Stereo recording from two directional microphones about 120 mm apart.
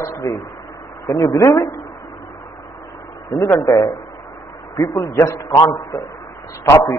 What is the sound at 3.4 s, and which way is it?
Speech, 25° left (ahead or behind).